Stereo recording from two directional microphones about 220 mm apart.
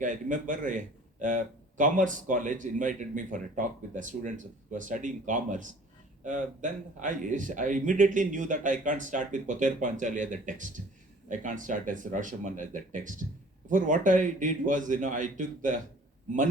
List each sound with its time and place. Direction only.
0.0 s a man's voice: 35° right (ahead or behind)